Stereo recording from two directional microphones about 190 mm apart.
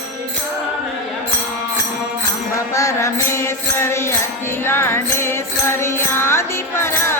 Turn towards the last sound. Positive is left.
turn(degrees=15)  # may be behind; listen again after turning